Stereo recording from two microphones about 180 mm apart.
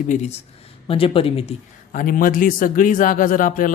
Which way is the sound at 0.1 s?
35° left (ahead or behind).